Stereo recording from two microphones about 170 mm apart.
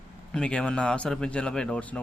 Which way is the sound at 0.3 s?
5° left (ahead or behind).